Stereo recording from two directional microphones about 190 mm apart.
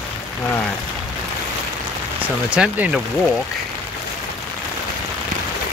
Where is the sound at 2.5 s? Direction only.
5° right (ahead or behind).